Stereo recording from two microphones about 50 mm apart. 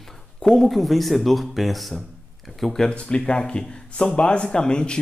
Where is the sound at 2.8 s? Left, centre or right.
Left.